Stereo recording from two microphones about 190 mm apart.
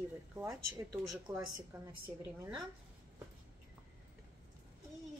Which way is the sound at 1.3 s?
15° right (ahead or behind).